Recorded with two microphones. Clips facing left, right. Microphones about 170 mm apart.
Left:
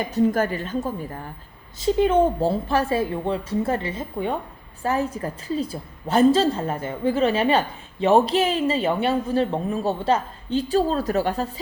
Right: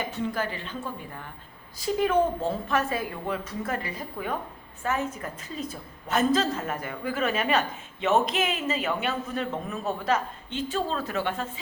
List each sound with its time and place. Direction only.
0.0 s a woman's voice: 40° left (ahead or behind)
1.8 s a woman's voice: 25° left (ahead or behind)